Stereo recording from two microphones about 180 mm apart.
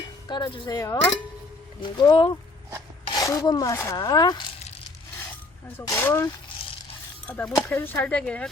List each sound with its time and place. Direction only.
0.3 s rub: 25° left (ahead or behind)
5.7 s speech: 15° left (ahead or behind)